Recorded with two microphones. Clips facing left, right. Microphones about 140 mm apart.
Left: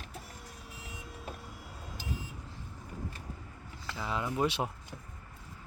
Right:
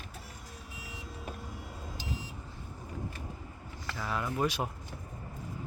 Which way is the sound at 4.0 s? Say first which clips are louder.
Even; 20° left (ahead or behind).